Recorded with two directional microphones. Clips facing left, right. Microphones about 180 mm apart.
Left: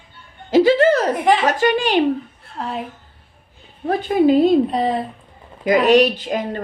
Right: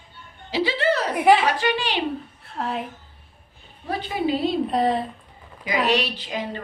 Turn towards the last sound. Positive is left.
turn(degrees=50)  # may be behind; listen again after turning